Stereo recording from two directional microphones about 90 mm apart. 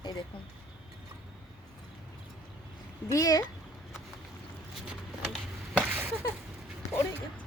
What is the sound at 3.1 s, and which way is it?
Speech, 40° left (ahead or behind).